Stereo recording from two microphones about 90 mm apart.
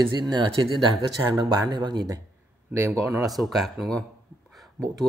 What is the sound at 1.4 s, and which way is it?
Speech, 50° right (ahead or behind).